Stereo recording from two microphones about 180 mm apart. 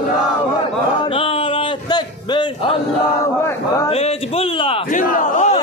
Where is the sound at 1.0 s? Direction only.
30° left (ahead or behind).